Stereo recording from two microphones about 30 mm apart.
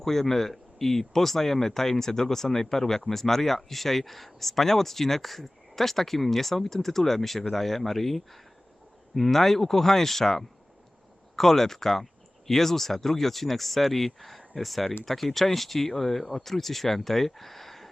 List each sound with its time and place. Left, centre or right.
0.0 s speech: centre